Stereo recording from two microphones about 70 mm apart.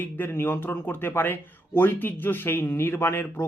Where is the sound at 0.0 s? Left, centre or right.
Left.